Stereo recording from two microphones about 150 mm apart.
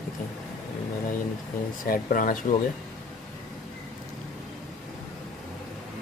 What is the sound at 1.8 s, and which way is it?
Speech, 65° left (ahead or behind).